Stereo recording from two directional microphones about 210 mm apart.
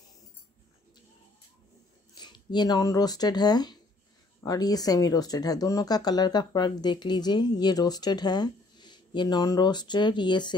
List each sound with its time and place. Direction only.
2.1 s speech: 20° left (ahead or behind)